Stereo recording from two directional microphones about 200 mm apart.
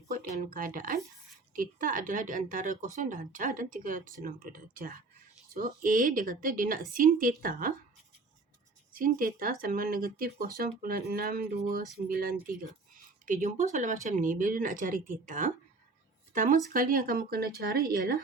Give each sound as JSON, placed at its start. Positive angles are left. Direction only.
{"t": 0.1, "sound": "speech", "side_deg": -35}
{"t": 8.9, "sound": "speech", "side_deg": -45}